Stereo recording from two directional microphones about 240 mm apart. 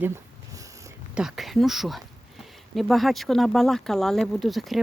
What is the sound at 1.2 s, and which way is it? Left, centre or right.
Speech, centre.